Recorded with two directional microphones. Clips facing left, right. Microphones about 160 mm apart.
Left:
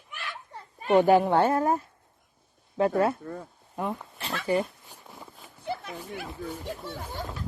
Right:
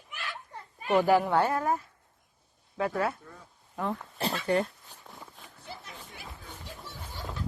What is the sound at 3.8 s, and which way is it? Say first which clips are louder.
Speech: left 1 dB; 10° left (ahead or behind).